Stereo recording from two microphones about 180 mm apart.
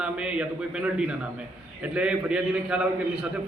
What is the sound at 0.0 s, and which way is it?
A man's voice, 5° right (ahead or behind).